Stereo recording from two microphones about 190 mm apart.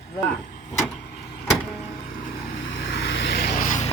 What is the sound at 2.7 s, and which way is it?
Vehicle, 75° left (ahead or behind).